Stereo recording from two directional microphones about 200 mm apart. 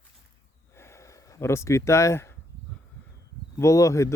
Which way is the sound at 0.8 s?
15° left (ahead or behind).